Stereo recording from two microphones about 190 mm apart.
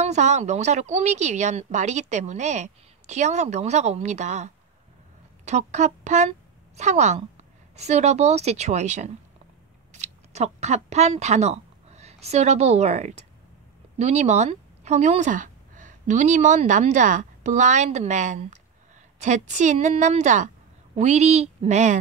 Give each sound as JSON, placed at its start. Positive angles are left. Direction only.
{"t": 0.0, "sound": "a woman's voice", "side_deg": -40}